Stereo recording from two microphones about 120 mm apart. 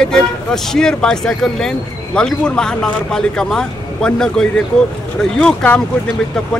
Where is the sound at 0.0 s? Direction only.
5° left (ahead or behind).